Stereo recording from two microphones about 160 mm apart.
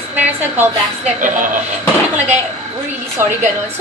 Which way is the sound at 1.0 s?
55° right (ahead or behind).